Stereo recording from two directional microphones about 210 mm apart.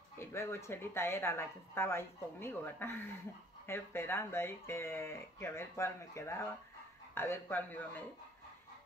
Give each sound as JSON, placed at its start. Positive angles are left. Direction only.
{"t": 0.2, "sound": "speech", "side_deg": 10}